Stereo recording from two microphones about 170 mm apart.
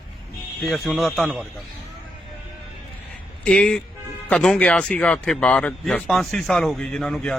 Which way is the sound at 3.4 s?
5° left (ahead or behind).